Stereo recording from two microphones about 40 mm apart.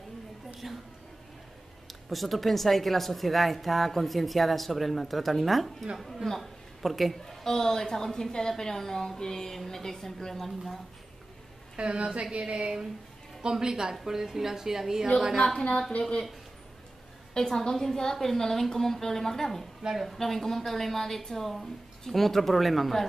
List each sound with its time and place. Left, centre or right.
0.6 s a woman's voice: centre
1.9 s a woman's voice: centre
7.4 s a woman's voice: centre
11.7 s a woman's voice: right; by 15.0 s centre
15.3 s a woman's voice: centre
17.3 s a woman's voice: centre
19.8 s a woman's voice: centre
20.1 s a woman's voice: centre